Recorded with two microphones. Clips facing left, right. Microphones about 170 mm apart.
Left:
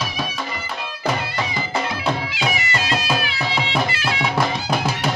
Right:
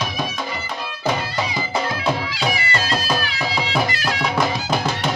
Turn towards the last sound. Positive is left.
turn(degrees=-35)  # may be behind; listen again after turning